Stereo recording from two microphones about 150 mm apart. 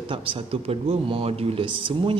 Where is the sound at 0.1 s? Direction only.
40° right (ahead or behind).